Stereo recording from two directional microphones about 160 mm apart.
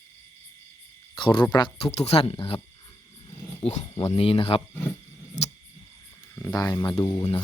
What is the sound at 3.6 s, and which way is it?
Speech, 40° left (ahead or behind).